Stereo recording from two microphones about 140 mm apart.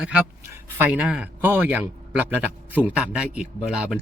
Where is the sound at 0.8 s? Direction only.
10° right (ahead or behind).